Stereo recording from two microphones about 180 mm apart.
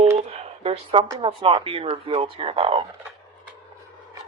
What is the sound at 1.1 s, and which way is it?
Speech, 30° right (ahead or behind).